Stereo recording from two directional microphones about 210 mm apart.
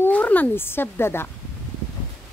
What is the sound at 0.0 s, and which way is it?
Speech, 10° left (ahead or behind).